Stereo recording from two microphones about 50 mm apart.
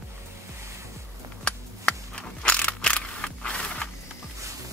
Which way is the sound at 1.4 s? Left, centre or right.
Centre.